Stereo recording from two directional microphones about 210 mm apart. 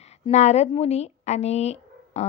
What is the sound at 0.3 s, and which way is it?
A woman's voice, 30° left (ahead or behind).